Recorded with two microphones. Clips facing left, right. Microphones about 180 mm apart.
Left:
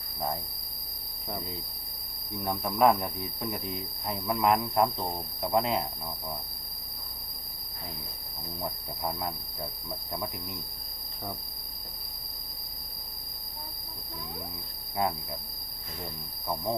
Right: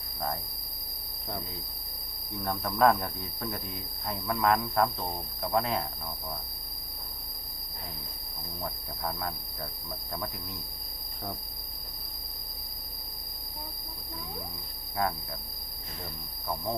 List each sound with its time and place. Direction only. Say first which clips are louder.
2.4 s speech: left 1 dB; 15° left (ahead or behind)
8.6 s speech: left 1 dB; 15° left (ahead or behind)
15.0 s speech: left 1 dB; 20° left (ahead or behind)